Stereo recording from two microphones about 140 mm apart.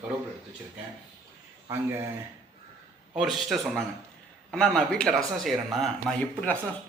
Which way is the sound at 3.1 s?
Centre (ahead or behind).